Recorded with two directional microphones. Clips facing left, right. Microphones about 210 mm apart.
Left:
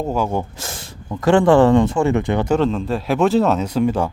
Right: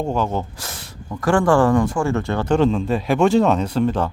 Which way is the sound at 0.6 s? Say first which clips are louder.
Left 3 dB; 25° left (ahead or behind).